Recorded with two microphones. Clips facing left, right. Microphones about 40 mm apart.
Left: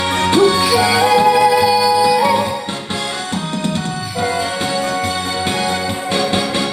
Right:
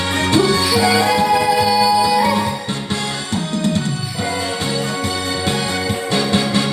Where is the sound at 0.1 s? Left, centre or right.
Left.